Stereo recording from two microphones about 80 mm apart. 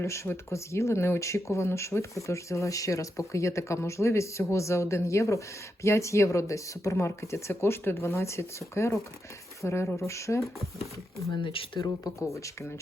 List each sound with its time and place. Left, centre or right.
0.0 s speech: left
11.3 s speech: left
12.0 s speech: left